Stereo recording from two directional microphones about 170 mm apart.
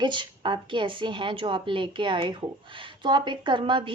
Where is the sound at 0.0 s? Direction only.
25° right (ahead or behind).